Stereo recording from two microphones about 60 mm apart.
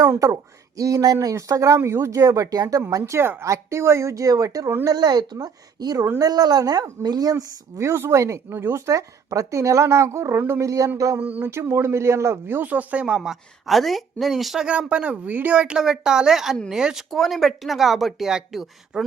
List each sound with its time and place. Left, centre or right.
0.0 s speech: right
1.8 s speech: right
3.2 s speech: right
3.4 s speech: right
4.9 s a woman's voice: right
10.6 s speech: right
11.2 s speech: right
11.4 s speech: right
12.6 s speech: right; by 14.7 s centre
14.7 s a woman's voice: right